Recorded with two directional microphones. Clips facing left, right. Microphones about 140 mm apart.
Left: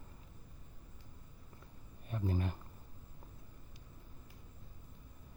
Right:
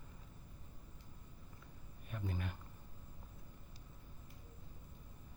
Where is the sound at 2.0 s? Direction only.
35° left (ahead or behind).